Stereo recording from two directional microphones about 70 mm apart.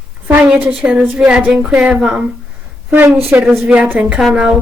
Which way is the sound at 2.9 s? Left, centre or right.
Right.